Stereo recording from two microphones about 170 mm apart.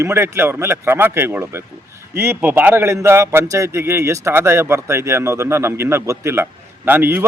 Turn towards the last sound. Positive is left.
turn(degrees=-10)  # may be behind; listen again after turning